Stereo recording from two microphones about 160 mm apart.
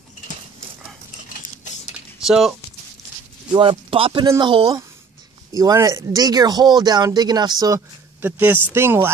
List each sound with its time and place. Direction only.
2.2 s speech: centre (ahead or behind)
3.5 s speech: 35° right (ahead or behind); by 9.1 s 15° right (ahead or behind)